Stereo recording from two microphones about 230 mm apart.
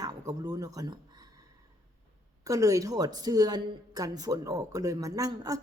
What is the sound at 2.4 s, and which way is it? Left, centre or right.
A woman's voice, centre.